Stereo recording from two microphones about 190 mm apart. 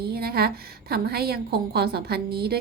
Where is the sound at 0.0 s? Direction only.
55° right (ahead or behind).